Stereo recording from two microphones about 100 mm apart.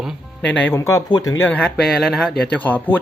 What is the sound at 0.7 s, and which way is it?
Speech, 30° left (ahead or behind).